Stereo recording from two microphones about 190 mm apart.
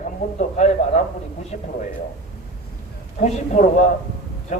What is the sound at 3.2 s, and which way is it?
A man's voice, 40° left (ahead or behind).